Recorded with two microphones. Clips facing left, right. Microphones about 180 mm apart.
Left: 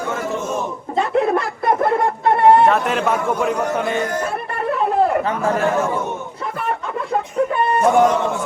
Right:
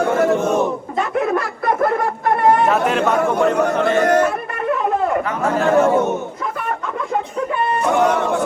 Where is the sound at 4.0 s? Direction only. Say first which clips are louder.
Right 8 dB; 70° right (ahead or behind).